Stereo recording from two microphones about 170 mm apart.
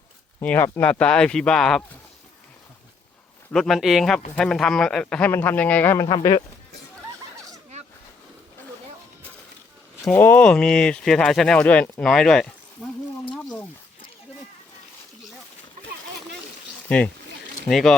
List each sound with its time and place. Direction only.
0.4 s speech: 10° left (ahead or behind)
3.5 s speech: centre (ahead or behind)
6.1 s speech: 25° left (ahead or behind)
10.1 s speech: 10° left (ahead or behind)
17.7 s speech: centre (ahead or behind)